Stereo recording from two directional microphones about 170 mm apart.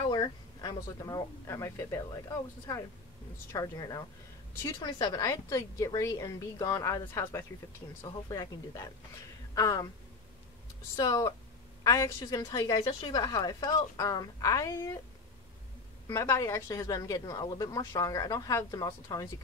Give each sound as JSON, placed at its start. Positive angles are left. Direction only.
{"t": 0.1, "sound": "a woman's voice", "side_deg": 25}
{"t": 11.0, "sound": "a woman's voice", "side_deg": 20}
{"t": 16.1, "sound": "a woman's voice", "side_deg": 15}